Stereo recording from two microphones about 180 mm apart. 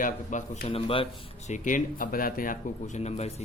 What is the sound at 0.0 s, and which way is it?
A man's voice, 45° left (ahead or behind).